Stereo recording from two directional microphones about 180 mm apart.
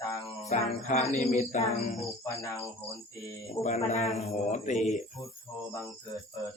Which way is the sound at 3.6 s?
40° left (ahead or behind).